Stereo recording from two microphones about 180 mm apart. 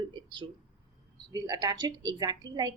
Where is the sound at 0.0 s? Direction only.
25° right (ahead or behind).